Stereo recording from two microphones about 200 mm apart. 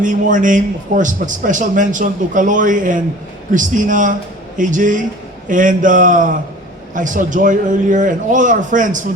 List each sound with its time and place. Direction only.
0.0 s a man's voice: 40° right (ahead or behind)